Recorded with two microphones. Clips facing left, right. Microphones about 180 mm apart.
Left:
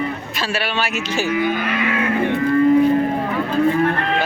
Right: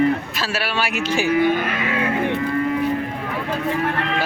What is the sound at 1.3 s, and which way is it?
Speech, 35° right (ahead or behind).